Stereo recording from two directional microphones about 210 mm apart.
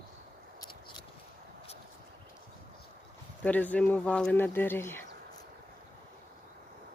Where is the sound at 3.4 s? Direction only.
5° left (ahead or behind).